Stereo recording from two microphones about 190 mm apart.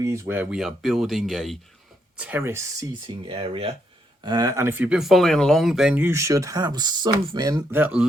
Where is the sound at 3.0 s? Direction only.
25° right (ahead or behind).